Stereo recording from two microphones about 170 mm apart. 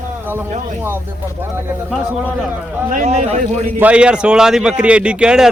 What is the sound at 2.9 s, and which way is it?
Speech, 45° right (ahead or behind).